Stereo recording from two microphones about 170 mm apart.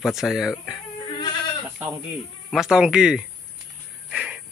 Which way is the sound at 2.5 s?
5° right (ahead or behind).